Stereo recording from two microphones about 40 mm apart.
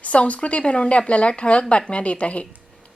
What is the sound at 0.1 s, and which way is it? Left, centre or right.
A woman's voice, left.